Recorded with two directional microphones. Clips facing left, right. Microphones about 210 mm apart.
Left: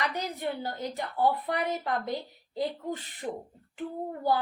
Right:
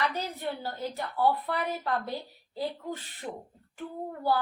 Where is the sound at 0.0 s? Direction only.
15° left (ahead or behind).